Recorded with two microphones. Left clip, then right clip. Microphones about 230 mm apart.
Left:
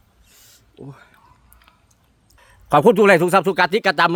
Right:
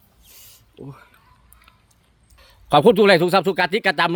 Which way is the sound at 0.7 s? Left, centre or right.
Centre.